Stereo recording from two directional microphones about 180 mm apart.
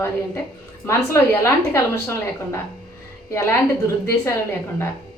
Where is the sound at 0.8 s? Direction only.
15° left (ahead or behind).